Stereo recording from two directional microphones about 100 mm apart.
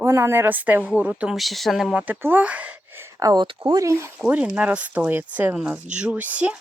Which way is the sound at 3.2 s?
35° right (ahead or behind).